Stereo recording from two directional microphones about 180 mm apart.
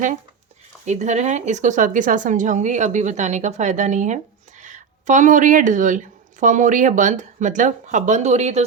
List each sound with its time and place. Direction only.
0.9 s a woman's voice: 40° right (ahead or behind)